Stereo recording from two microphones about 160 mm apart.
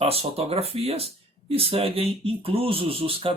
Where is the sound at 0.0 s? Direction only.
40° right (ahead or behind).